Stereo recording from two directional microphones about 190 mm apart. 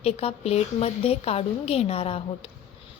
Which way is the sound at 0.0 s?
30° left (ahead or behind).